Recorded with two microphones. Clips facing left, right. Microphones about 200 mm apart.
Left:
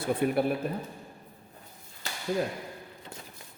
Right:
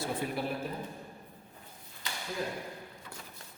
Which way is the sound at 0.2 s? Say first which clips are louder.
Left 9 dB; 60° left (ahead or behind).